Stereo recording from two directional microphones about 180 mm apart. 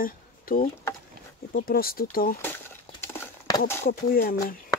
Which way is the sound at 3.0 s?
15° left (ahead or behind).